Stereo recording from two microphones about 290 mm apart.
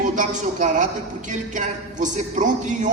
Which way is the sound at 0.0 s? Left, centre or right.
Right.